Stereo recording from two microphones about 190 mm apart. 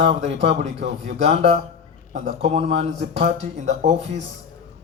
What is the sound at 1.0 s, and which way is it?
Speech, 35° right (ahead or behind).